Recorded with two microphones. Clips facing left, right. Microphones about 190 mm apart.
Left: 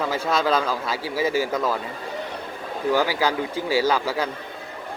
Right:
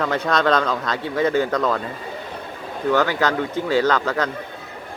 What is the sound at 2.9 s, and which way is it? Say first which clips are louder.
Speech: right 2 dB; 10° left (ahead or behind).